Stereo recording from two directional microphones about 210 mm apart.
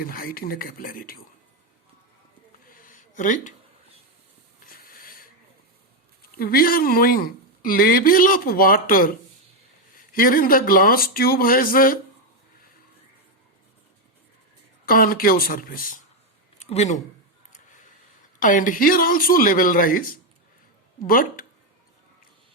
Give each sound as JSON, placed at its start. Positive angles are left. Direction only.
{"t": 0.0, "sound": "speech", "side_deg": 45}
{"t": 2.6, "sound": "a sound", "side_deg": 40}
{"t": 4.6, "sound": "mechanisms", "side_deg": 45}
{"t": 6.3, "sound": "speech", "side_deg": 45}
{"t": 14.8, "sound": "speech", "side_deg": 45}
{"t": 16.6, "sound": "speech", "side_deg": 30}
{"t": 18.3, "sound": "speech", "side_deg": 40}